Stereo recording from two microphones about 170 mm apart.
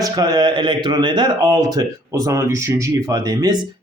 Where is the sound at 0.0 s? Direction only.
25° right (ahead or behind).